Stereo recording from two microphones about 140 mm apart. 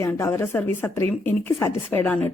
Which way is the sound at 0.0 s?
20° left (ahead or behind).